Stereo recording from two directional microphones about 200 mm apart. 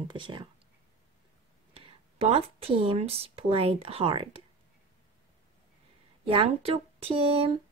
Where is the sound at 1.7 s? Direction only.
30° right (ahead or behind).